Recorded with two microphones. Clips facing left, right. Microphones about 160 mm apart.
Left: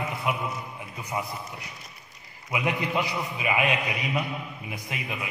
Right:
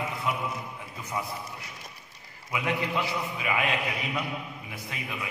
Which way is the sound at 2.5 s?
15° left (ahead or behind).